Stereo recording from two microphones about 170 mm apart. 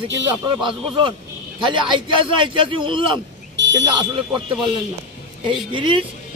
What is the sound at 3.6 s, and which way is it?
Smoke detector, 90° right.